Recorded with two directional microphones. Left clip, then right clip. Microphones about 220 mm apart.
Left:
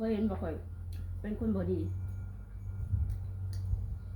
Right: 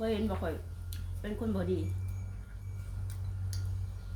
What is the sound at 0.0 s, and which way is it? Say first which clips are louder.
Speech: right 1 dB; 15° right (ahead or behind).